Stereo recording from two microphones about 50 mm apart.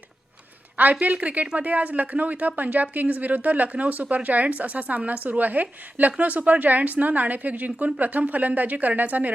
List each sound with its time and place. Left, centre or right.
0.9 s a woman's voice: right